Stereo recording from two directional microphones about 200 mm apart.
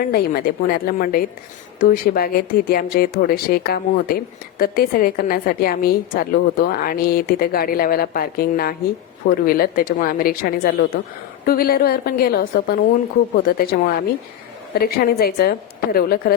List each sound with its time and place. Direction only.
0.0 s speech: 50° left (ahead or behind)